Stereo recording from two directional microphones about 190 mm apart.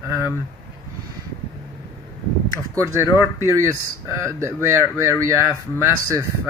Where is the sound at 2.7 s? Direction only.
15° right (ahead or behind).